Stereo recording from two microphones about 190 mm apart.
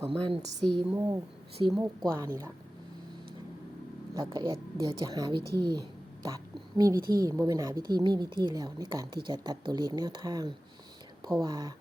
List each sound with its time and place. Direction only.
0.0 s a woman's voice: 20° right (ahead or behind)
0.6 s a woman's voice: 5° left (ahead or behind)
0.9 s a woman's voice: 15° right (ahead or behind)
1.7 s a woman's voice: centre (ahead or behind)
2.1 s a woman's voice: 15° right (ahead or behind)
4.1 s a woman's voice: 25° right (ahead or behind)
6.2 s whispering: 20° right (ahead or behind)
7.3 s a woman's voice: 20° right (ahead or behind)